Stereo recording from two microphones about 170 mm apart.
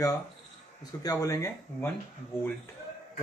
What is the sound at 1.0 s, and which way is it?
Speech, 20° left (ahead or behind).